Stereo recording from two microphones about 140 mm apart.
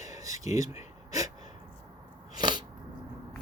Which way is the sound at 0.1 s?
25° right (ahead or behind).